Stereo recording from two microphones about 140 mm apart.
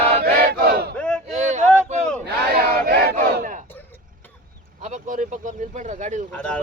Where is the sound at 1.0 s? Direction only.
5° left (ahead or behind).